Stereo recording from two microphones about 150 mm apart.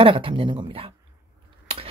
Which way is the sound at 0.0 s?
35° right (ahead or behind).